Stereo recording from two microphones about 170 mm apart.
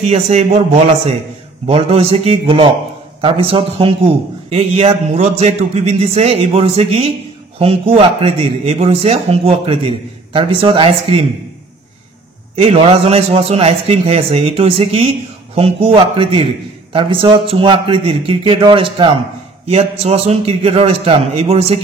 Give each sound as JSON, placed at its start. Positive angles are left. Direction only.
{"t": 0.0, "sound": "a man's voice", "side_deg": -40}
{"t": 1.7, "sound": "a man's voice", "side_deg": -35}
{"t": 12.5, "sound": "a man's voice", "side_deg": -35}